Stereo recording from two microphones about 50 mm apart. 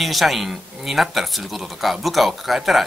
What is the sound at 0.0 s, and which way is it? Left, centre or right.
Speech, centre.